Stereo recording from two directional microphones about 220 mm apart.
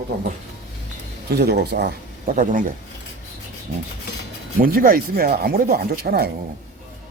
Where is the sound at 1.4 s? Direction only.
45° right (ahead or behind).